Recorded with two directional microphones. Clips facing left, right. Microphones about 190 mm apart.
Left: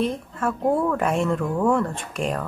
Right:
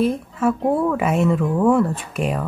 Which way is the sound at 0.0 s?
5° right (ahead or behind).